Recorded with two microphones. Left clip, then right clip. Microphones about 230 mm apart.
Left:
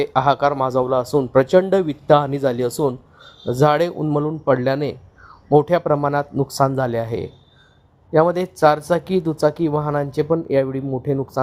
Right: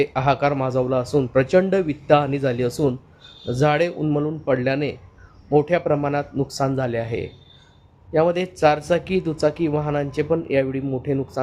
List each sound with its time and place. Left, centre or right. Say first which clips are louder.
0.0 s speech: left 3 dB; left